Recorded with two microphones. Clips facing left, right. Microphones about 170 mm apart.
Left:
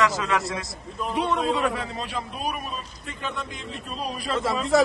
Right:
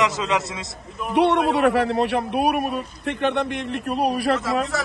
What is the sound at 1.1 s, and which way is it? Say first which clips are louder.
A man's voice: right 7 dB; 75° right (ahead or behind).